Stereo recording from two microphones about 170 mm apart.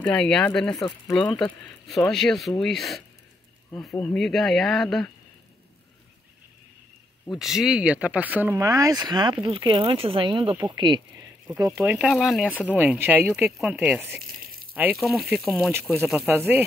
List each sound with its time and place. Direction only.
0.0 s speech: 5° left (ahead or behind)
7.2 s speech: centre (ahead or behind)